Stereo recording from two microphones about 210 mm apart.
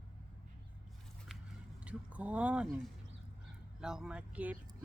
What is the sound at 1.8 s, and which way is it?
A woman's voice, 5° right (ahead or behind).